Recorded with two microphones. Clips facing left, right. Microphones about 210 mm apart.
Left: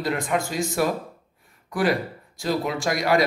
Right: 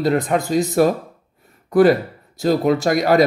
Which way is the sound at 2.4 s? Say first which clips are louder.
Right 8 dB; 40° right (ahead or behind).